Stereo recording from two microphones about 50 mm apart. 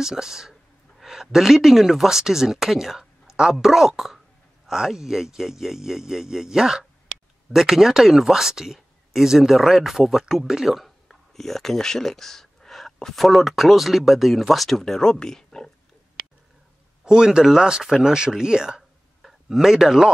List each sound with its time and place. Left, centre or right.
0.0 s speech: centre
17.0 s a man's voice: centre